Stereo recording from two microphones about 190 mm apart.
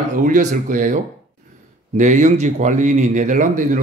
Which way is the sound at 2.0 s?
40° right (ahead or behind).